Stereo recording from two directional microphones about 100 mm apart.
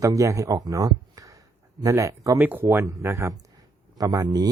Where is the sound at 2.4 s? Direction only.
20° right (ahead or behind).